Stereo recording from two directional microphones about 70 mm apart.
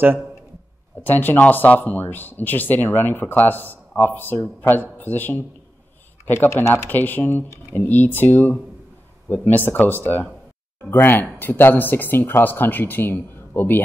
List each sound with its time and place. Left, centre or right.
1.0 s speech: left
6.9 s speech: left